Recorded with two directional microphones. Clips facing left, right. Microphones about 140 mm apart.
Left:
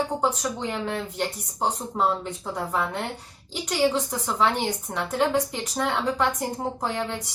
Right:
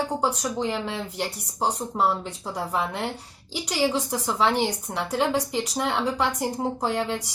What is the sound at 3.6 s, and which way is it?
Speech, 10° right (ahead or behind).